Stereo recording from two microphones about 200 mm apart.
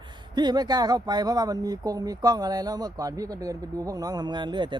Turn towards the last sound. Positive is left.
turn(degrees=-25)  # may be behind; listen again after turning